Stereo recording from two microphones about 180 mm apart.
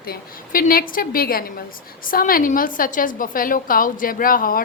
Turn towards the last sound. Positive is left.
turn(degrees=50)  # may be behind; listen again after turning